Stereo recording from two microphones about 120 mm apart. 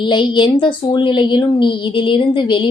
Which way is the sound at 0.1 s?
40° left (ahead or behind).